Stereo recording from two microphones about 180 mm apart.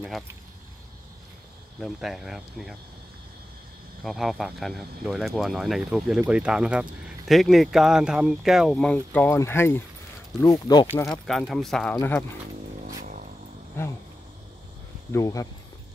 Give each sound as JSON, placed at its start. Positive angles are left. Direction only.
{"t": 1.8, "sound": "speech", "side_deg": 0}
{"t": 4.0, "sound": "speech", "side_deg": 0}
{"t": 11.1, "sound": "speech", "side_deg": 0}
{"t": 12.0, "sound": "speech", "side_deg": 10}
{"t": 13.0, "sound": "vehicle", "side_deg": -50}
{"t": 15.1, "sound": "speech", "side_deg": 15}